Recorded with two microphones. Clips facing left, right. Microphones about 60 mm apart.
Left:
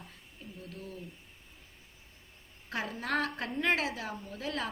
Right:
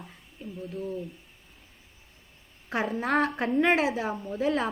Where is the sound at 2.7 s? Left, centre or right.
Right.